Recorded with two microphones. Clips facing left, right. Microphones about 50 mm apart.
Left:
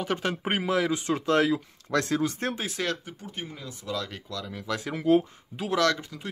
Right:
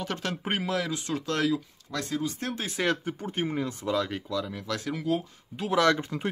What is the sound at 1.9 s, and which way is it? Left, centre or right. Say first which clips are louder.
Speech: left 5 dB; left.